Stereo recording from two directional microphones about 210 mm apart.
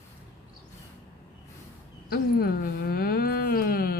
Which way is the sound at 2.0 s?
45° left (ahead or behind).